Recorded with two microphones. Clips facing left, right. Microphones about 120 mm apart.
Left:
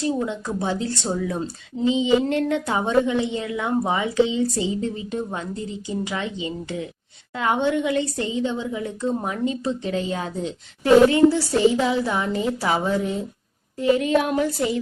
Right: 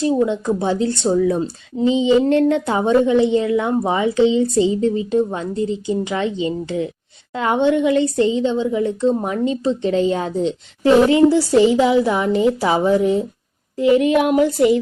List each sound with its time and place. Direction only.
0.0 s a woman's voice: 20° right (ahead or behind)
1.8 s a woman's voice: 30° right (ahead or behind)